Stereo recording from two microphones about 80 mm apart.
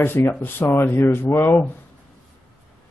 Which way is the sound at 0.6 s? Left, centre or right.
Left.